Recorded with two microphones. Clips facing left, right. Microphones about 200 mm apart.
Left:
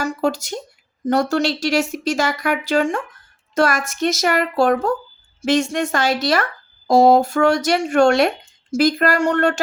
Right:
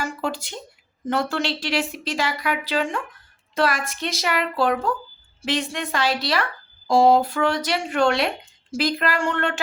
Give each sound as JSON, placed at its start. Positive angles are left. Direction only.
{"t": 0.0, "sound": "speech", "side_deg": 40}